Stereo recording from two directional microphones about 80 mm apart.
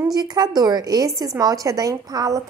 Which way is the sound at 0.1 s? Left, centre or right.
Right.